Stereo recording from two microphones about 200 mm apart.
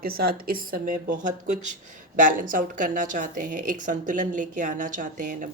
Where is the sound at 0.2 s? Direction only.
50° right (ahead or behind).